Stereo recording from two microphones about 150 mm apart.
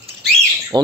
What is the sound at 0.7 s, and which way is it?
Speech, 30° right (ahead or behind).